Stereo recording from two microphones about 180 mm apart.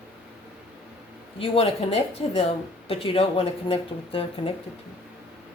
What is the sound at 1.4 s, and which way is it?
Speech, 35° left (ahead or behind).